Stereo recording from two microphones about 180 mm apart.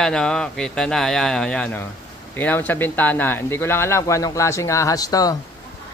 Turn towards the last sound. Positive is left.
turn(degrees=20)  # may be behind; listen again after turning